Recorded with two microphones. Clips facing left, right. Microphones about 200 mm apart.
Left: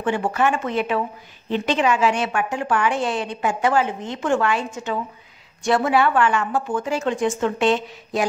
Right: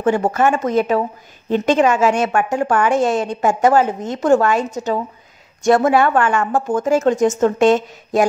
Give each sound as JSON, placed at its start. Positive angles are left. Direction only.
{"t": 0.0, "sound": "a woman's voice", "side_deg": -45}